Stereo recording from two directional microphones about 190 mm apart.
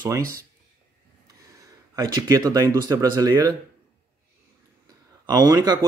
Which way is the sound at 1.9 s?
15° right (ahead or behind).